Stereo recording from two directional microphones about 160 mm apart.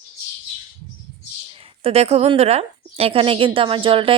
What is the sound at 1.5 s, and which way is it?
A woman's voice, 35° right (ahead or behind).